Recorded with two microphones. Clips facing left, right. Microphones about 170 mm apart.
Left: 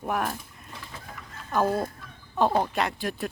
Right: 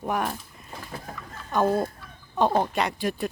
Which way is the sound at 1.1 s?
45° right (ahead or behind).